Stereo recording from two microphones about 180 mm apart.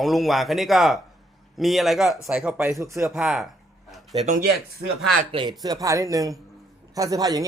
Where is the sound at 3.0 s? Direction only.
5° right (ahead or behind).